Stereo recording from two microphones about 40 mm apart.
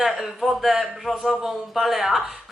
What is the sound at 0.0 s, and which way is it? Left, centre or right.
A woman's voice, centre.